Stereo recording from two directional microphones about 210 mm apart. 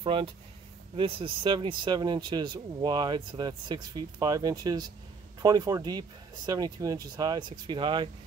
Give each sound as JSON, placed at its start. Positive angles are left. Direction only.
{"t": 0.0, "sound": "speech", "side_deg": -25}